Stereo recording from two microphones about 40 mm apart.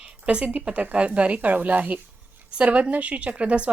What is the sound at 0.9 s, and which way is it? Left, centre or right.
A woman's voice, right.